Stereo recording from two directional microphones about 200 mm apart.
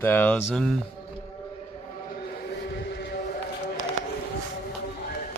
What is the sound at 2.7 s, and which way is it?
Vehicle, 60° left (ahead or behind).